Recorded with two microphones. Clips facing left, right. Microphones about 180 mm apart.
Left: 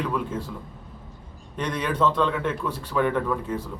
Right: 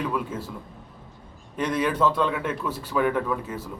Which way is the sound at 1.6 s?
5° right (ahead or behind).